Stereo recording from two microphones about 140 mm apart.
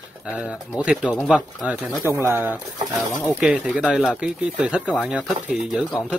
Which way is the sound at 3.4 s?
5° right (ahead or behind).